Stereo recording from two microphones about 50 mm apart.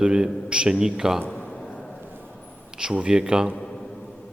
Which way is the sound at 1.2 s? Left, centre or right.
Left.